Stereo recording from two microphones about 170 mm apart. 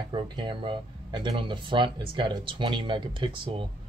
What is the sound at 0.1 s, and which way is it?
Speech, 30° right (ahead or behind).